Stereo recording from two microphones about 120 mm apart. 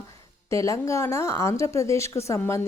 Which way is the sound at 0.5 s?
25° left (ahead or behind).